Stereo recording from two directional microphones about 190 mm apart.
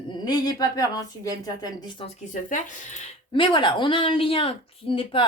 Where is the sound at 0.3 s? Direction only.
20° left (ahead or behind).